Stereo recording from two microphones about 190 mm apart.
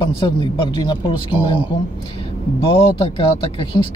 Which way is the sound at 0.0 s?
25° left (ahead or behind).